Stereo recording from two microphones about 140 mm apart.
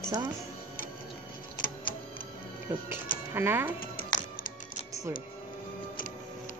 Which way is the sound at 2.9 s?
15° right (ahead or behind).